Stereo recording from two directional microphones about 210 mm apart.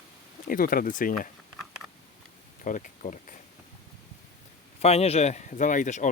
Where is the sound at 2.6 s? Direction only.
35° left (ahead or behind).